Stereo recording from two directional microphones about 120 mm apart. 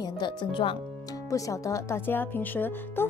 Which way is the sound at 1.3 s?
25° left (ahead or behind).